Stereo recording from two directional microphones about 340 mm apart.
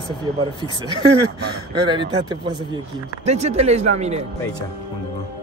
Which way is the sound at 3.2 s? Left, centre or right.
Centre.